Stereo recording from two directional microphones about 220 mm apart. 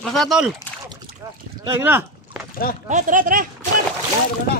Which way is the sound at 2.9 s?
35° right (ahead or behind).